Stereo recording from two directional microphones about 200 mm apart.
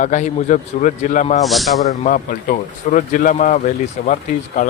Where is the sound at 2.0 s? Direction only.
40° left (ahead or behind).